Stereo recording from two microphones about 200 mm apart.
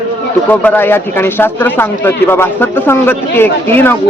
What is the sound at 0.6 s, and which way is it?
A man's voice, 10° left (ahead or behind).